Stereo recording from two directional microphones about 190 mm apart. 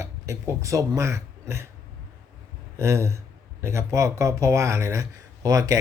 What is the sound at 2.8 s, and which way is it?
Speech, 15° right (ahead or behind).